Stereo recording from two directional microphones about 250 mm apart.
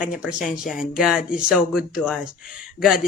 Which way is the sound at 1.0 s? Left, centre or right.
Centre.